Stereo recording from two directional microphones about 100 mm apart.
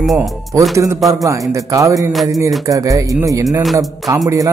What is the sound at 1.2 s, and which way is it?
Music, 30° right (ahead or behind).